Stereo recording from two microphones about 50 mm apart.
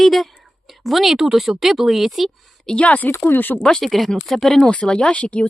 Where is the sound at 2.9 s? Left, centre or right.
Left.